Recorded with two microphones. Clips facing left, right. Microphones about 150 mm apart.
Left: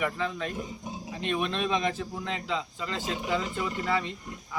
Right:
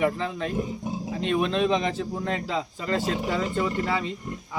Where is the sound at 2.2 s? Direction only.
45° right (ahead or behind).